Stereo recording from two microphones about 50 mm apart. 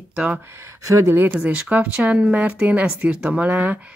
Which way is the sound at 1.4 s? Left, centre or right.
Right.